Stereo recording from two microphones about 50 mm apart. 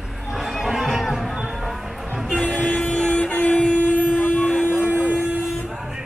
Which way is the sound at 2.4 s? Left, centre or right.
Left.